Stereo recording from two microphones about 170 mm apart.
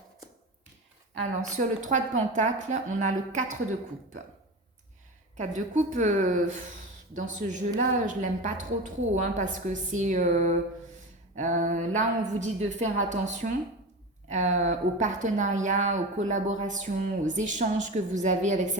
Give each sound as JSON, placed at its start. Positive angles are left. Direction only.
{"t": 1.5, "sound": "a woman's voice", "side_deg": -50}
{"t": 5.4, "sound": "a woman's voice", "side_deg": -45}